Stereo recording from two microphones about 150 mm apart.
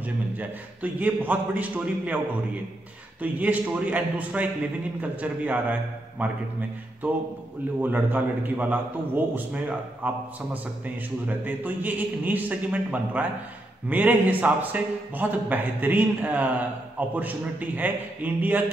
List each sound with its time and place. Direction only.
0.4 s a man's voice: 10° right (ahead or behind)
3.2 s a man's voice: 10° right (ahead or behind)